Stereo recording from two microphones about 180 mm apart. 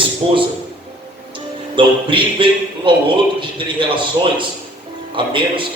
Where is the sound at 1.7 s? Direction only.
30° right (ahead or behind).